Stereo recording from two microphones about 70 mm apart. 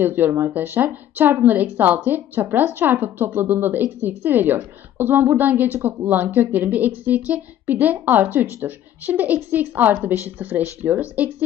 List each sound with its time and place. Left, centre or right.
0.0 s speech: right